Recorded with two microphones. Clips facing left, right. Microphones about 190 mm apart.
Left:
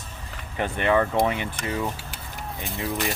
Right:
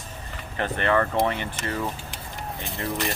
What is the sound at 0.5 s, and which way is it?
Speech, 15° left (ahead or behind).